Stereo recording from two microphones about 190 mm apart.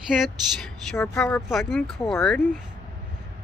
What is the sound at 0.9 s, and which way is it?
Speech, 10° left (ahead or behind).